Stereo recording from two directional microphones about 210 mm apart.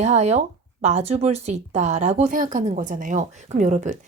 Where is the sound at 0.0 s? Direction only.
30° right (ahead or behind).